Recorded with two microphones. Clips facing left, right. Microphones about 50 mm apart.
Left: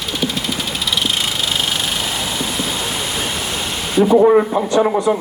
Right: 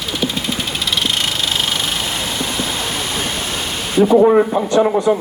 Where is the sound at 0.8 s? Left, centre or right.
Centre.